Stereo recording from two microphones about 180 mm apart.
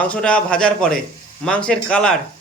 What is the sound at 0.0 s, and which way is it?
A man's voice, 5° left (ahead or behind).